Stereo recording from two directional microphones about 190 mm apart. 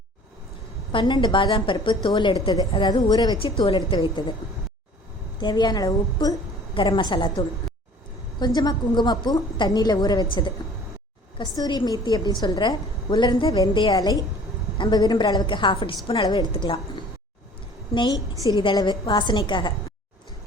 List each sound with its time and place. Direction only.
0.9 s a woman's voice: 25° left (ahead or behind)
5.4 s a woman's voice: 25° left (ahead or behind)
11.3 s a woman's voice: 20° left (ahead or behind)